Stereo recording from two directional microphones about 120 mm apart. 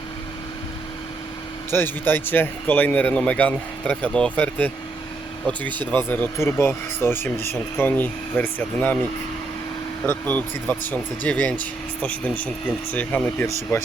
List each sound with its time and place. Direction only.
1.7 s speech: 20° left (ahead or behind)
5.9 s speech: 15° left (ahead or behind)
10.2 s speech: 10° left (ahead or behind)